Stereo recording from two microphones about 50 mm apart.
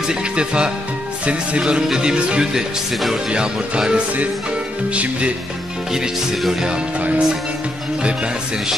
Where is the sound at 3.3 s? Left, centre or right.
Centre.